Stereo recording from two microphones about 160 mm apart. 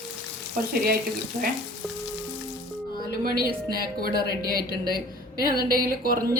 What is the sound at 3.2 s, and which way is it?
A woman's voice, 65° right (ahead or behind).